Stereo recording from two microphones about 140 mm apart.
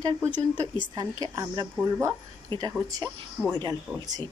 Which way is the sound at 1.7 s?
15° right (ahead or behind).